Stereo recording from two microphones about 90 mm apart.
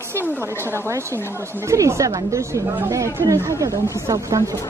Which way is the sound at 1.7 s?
35° right (ahead or behind).